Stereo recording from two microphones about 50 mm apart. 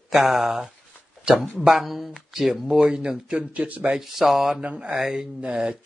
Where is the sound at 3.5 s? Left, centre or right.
Right.